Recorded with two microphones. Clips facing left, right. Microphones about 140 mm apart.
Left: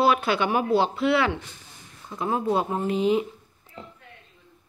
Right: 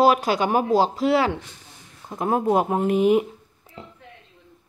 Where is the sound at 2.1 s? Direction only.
50° right (ahead or behind).